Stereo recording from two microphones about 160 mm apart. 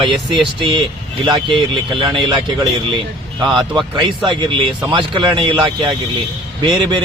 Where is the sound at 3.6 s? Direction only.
30° right (ahead or behind).